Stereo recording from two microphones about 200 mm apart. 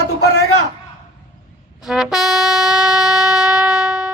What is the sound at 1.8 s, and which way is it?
Music, centre (ahead or behind).